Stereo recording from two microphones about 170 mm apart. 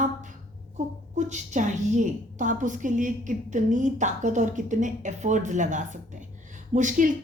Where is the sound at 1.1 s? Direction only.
45° right (ahead or behind).